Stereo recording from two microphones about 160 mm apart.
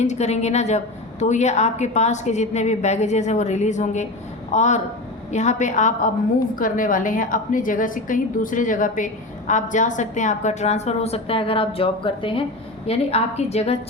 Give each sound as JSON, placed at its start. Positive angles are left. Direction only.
{"t": 0.0, "sound": "a woman's voice", "side_deg": 45}